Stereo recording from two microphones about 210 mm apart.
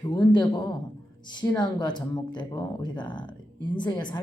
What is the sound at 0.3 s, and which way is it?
Speech, 20° left (ahead or behind).